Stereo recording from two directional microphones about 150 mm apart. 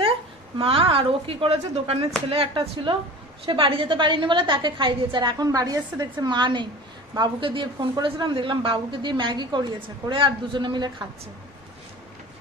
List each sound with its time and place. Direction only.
0.6 s a man's voice: 40° right (ahead or behind)